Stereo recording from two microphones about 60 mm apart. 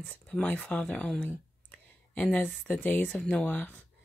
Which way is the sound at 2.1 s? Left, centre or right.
Left.